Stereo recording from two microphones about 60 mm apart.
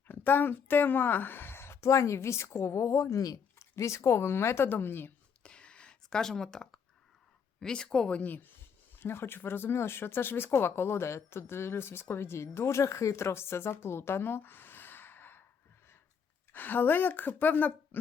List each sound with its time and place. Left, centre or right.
0.1 s speech: left
5.4 s a sound: centre
7.6 s speech: centre; by 15.4 s left
16.5 s speech: left